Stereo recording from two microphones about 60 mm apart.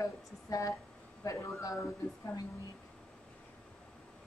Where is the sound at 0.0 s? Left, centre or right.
Left.